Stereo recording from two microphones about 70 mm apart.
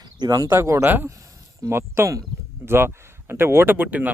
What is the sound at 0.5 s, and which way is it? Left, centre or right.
Speech, right.